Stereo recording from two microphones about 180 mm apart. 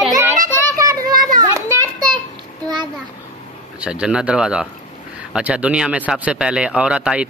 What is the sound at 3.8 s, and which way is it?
Speech, 5° right (ahead or behind).